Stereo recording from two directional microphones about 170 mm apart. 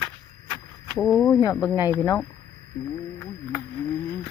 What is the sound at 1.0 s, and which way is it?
Speech, 5° left (ahead or behind).